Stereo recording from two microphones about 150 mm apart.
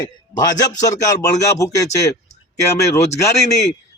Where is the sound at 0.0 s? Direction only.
25° left (ahead or behind).